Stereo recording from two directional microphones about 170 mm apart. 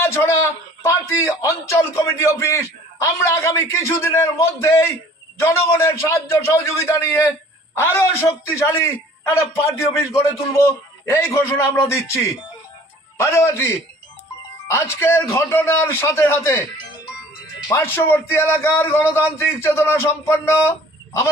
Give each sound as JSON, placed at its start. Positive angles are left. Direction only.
{"t": 0.0, "sound": "a man's voice", "side_deg": 15}
{"t": 13.2, "sound": "a man's voice", "side_deg": 15}